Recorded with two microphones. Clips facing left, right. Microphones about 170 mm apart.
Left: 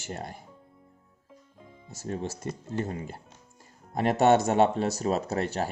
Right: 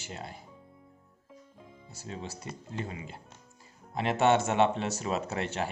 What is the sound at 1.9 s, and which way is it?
Speech, 50° left (ahead or behind).